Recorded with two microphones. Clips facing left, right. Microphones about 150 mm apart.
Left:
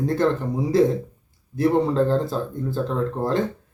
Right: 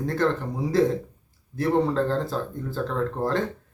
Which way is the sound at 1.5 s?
15° left (ahead or behind).